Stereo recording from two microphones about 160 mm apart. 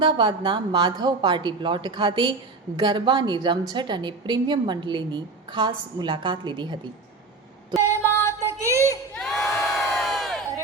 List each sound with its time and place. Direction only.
0.0 s a woman's voice: 30° right (ahead or behind)
7.8 s female singing: 20° right (ahead or behind)
8.4 s child singing: 15° right (ahead or behind)
9.1 s crowd: centre (ahead or behind)